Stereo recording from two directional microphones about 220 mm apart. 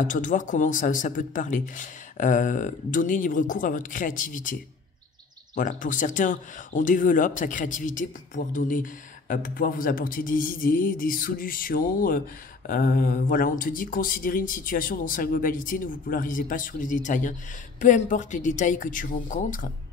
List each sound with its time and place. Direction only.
0.0 s speech: 35° left (ahead or behind)
5.6 s speech: 35° left (ahead or behind)